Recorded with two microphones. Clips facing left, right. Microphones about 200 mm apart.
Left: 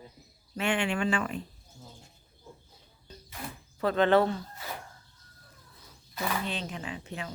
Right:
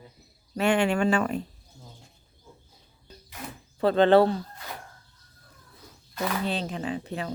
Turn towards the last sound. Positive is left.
turn(degrees=-35)  # may be behind; listen again after turning